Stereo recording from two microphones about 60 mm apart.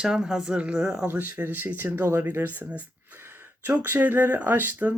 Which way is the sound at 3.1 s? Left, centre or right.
Right.